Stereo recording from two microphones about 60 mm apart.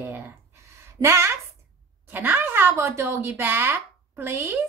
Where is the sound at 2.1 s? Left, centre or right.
Right.